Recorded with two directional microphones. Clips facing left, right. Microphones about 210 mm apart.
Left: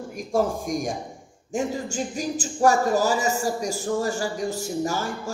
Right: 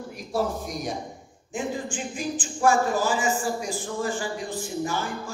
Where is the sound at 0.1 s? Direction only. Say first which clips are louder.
Left 4 dB; 45° left (ahead or behind).